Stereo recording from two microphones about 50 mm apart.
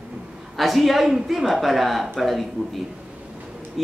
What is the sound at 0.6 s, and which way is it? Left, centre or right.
A man's voice, centre.